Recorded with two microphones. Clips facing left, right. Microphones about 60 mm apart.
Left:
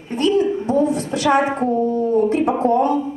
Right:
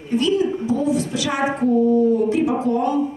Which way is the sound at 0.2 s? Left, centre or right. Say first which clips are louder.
Left 3 dB; left.